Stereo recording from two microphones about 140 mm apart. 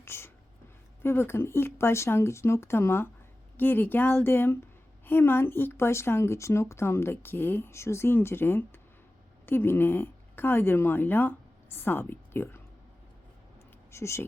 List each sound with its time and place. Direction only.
0.0 s a sound: 15° left (ahead or behind)
1.0 s a woman's voice: 15° left (ahead or behind)
13.9 s speech: 20° left (ahead or behind)